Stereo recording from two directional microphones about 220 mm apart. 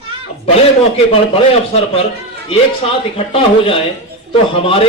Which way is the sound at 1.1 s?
25° left (ahead or behind).